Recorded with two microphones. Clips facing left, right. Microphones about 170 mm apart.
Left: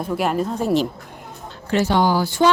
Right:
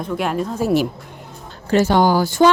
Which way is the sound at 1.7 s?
45° right (ahead or behind).